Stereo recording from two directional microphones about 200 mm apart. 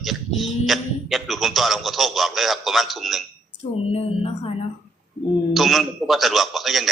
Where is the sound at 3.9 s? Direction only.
30° left (ahead or behind).